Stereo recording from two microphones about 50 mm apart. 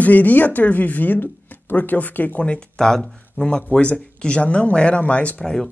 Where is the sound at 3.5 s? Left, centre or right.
Left.